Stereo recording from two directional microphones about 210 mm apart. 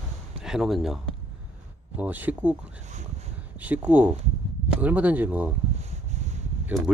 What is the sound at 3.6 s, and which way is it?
Speech, 5° right (ahead or behind).